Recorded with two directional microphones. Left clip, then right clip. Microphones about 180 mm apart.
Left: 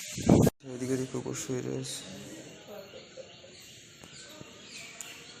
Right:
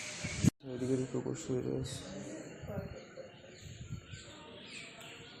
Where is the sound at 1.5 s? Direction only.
15° left (ahead or behind).